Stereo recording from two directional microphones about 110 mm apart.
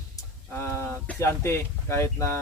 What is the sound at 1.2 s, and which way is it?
Speech, 25° left (ahead or behind).